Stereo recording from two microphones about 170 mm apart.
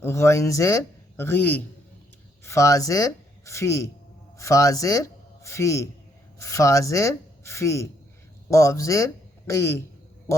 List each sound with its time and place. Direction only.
0.0 s a man's voice: 15° left (ahead or behind)